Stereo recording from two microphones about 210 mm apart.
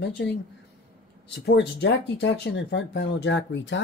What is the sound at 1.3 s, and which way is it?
Speech, 55° left (ahead or behind).